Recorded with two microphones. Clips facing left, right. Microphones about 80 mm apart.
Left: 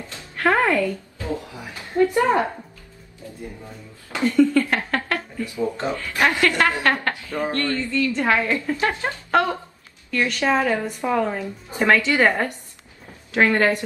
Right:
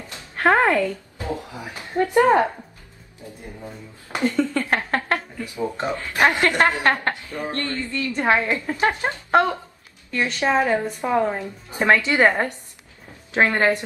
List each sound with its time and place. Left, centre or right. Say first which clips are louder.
0.4 s speech: right 1 dB; right
4.1 s speech: left 4 dB; right